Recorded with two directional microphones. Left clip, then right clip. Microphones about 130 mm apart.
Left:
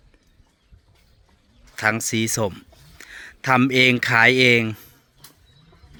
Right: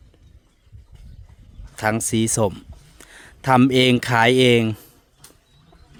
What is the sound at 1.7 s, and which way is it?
Speech, 35° right (ahead or behind).